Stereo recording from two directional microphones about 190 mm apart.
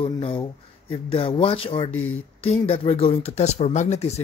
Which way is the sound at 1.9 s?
90° left.